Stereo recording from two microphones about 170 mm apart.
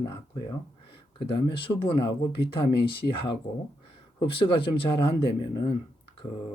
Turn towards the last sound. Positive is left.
turn(degrees=35)  # may be behind; listen again after turning